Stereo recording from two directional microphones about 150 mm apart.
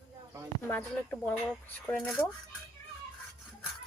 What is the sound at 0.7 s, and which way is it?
Speech, 10° left (ahead or behind).